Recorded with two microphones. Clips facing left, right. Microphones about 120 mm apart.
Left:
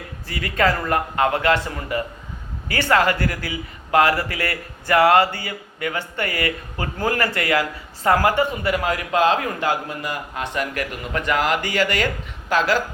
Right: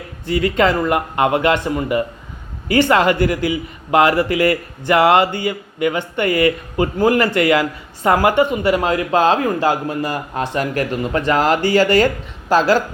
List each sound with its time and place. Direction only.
0.3 s speech: 25° right (ahead or behind)